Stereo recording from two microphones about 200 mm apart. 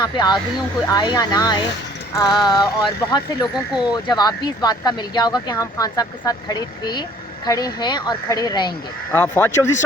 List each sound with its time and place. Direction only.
0.0 s speech: 20° left (ahead or behind)